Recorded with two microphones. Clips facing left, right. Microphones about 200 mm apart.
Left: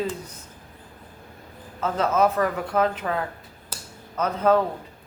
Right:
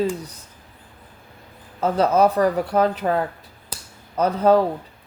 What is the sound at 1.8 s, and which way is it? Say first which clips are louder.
A woman's voice: right 4 dB; 35° right (ahead or behind).